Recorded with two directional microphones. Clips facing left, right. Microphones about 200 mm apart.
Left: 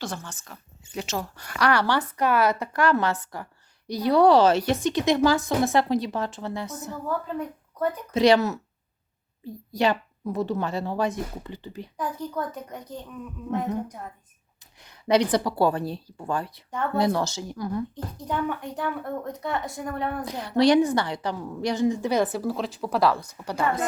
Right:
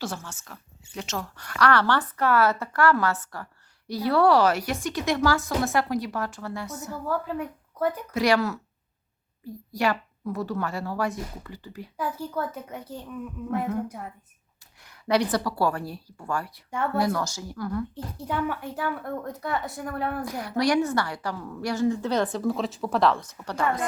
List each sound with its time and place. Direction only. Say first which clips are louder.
0.0 s a woman's voice: even; 5° right (ahead or behind)
1.4 s a woman's voice: right 1 dB; 15° left (ahead or behind)
7.1 s speech: right 1 dB; 10° right (ahead or behind)
8.1 s a child's voice: left 6 dB; 20° left (ahead or behind)
11.9 s speech: even; 5° right (ahead or behind)
14.8 s a child's voice: left 3 dB; 20° left (ahead or behind)
17.9 s a woman's voice: even; 10° right (ahead or behind)
20.2 s a child's voice: left 6 dB; 20° left (ahead or behind)